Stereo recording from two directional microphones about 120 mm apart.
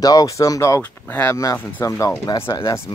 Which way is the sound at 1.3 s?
25° left (ahead or behind).